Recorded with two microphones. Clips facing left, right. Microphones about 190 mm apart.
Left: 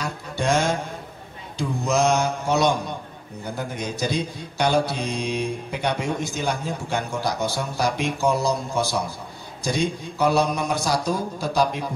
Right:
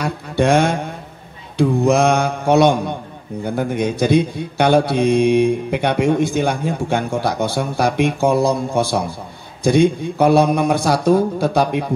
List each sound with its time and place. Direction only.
0.0 s music: 60° right (ahead or behind)
1.6 s a man's voice: 55° right (ahead or behind)